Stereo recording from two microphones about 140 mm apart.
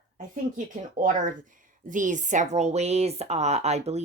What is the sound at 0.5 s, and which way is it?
Speech, 70° right (ahead or behind).